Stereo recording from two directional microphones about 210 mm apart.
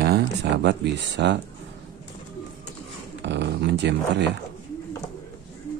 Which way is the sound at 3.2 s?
55° right (ahead or behind).